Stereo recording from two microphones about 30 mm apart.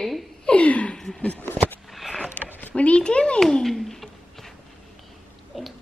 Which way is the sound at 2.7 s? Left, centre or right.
Left.